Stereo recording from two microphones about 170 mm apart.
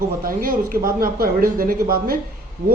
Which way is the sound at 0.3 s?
60° right (ahead or behind).